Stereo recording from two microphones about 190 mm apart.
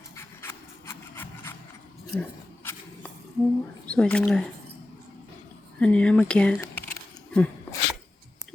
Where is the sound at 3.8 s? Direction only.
5° left (ahead or behind).